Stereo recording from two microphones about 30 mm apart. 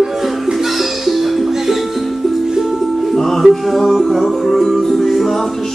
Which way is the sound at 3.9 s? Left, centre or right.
Centre.